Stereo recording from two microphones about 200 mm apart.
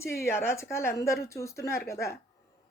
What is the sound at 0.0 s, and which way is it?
A woman's voice, 15° left (ahead or behind).